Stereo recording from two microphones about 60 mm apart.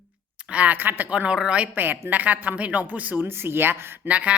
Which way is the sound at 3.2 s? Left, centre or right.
Right.